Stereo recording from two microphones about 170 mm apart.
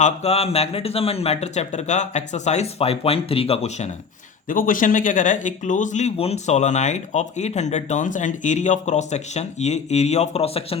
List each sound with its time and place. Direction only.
0.0 s speech: 40° left (ahead or behind)
4.4 s speech: 55° left (ahead or behind); by 10.8 s 35° left (ahead or behind)